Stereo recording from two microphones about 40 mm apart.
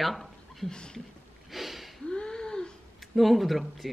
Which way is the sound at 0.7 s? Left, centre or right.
Left.